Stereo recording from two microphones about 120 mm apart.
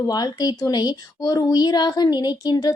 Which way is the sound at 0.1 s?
35° left (ahead or behind).